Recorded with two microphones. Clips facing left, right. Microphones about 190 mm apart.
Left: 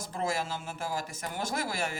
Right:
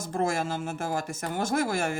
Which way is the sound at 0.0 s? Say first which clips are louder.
Right 5 dB; 50° right (ahead or behind).